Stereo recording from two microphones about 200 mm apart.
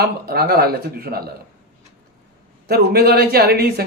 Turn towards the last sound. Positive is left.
turn(degrees=-55)  # may be behind; listen again after turning